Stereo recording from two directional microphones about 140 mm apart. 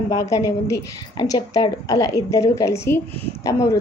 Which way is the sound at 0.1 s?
25° left (ahead or behind).